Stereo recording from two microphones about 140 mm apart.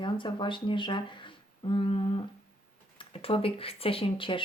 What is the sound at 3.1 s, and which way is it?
Speech, 40° left (ahead or behind).